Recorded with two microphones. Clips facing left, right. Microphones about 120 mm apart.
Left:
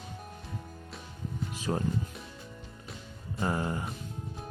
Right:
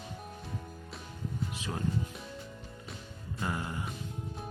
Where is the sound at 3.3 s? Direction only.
35° left (ahead or behind).